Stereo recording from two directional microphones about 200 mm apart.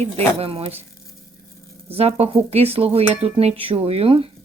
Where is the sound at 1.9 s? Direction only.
30° right (ahead or behind).